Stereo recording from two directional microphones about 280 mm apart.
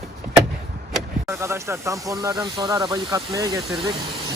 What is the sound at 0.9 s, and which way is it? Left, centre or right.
Speech, centre.